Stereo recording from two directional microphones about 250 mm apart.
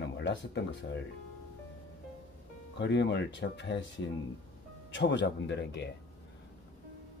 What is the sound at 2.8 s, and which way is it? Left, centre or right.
Speech, left.